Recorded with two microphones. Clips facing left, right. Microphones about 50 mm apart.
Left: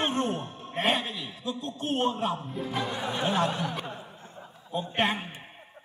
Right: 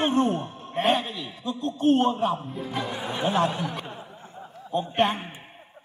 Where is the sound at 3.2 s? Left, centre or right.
Centre.